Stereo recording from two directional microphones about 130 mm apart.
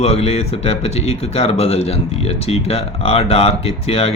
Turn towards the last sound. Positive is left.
turn(degrees=50)  # may be behind; listen again after turning